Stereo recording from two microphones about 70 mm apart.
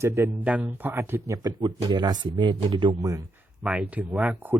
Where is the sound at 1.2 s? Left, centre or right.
Right.